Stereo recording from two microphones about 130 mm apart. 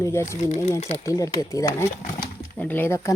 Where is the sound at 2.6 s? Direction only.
15° left (ahead or behind).